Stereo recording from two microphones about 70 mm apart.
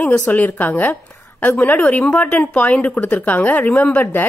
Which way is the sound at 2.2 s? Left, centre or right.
Centre.